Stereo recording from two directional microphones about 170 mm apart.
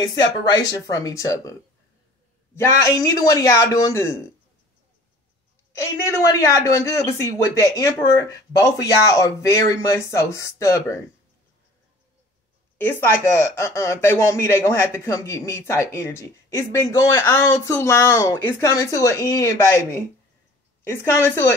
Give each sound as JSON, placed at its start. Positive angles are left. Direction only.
{"t": 0.0, "sound": "speech", "side_deg": 20}
{"t": 5.8, "sound": "speech", "side_deg": 20}
{"t": 12.7, "sound": "speech", "side_deg": 15}